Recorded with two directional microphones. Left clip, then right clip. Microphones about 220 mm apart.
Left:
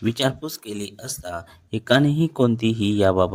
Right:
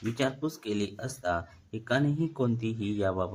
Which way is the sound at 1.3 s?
40° left (ahead or behind).